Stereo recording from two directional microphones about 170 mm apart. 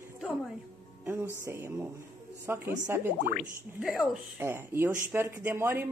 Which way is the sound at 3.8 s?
5° right (ahead or behind).